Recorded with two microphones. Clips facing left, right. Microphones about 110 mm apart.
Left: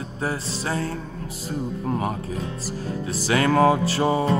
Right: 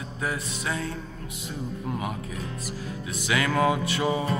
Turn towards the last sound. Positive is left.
turn(degrees=35)  # may be behind; listen again after turning